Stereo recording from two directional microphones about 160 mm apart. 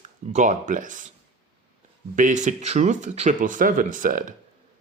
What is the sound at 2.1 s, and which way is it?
Speech, 50° right (ahead or behind).